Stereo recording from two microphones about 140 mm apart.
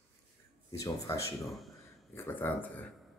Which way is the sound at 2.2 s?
15° left (ahead or behind).